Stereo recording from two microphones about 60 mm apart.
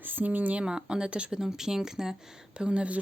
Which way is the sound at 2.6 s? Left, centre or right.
Centre.